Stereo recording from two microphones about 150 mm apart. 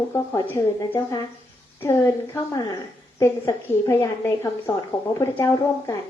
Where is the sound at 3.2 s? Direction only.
20° left (ahead or behind).